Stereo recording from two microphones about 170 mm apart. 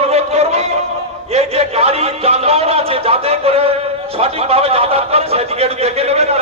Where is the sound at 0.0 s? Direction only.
40° right (ahead or behind).